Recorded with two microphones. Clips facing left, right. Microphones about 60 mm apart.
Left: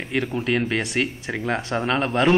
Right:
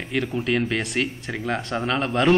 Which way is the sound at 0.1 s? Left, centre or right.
Centre.